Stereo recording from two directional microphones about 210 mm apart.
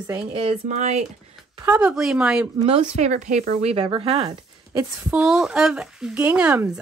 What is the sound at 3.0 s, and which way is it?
Speech, 35° right (ahead or behind).